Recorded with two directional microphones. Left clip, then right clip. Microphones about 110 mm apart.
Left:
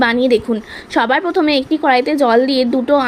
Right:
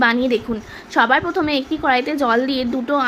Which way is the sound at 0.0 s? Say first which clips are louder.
Left 4 dB; 45° left (ahead or behind).